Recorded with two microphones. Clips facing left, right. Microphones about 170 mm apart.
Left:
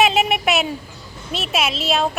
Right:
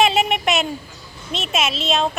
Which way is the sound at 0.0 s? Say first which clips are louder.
Even; centre (ahead or behind).